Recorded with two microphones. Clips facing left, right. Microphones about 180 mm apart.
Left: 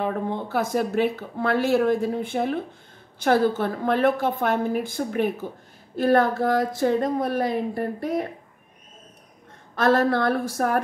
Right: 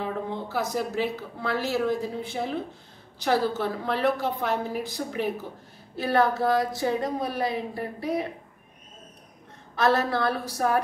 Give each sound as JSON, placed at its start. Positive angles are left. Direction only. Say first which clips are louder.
{"t": 0.0, "sound": "speech", "louder": "left 4 dB", "side_deg": 55}
{"t": 9.8, "sound": "speech", "louder": "left 4 dB", "side_deg": 50}